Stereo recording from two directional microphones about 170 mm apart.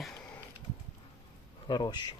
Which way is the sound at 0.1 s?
10° left (ahead or behind).